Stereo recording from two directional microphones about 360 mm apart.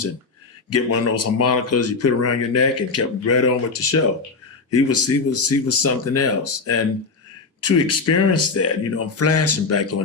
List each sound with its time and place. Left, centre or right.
0.7 s speech: left